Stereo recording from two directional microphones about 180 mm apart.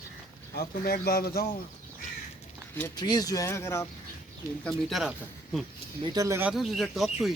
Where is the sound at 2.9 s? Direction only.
20° left (ahead or behind).